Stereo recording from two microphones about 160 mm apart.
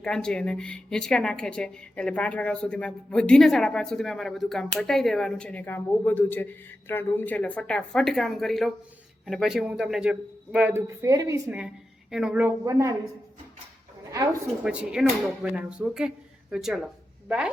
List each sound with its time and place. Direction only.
0.0 s a woman's voice: 5° left (ahead or behind); by 11.5 s 20° right (ahead or behind)
12.1 s a woman's voice: 5° right (ahead or behind)
12.4 s speech: 20° right (ahead or behind)
14.6 s a woman's voice: 5° right (ahead or behind)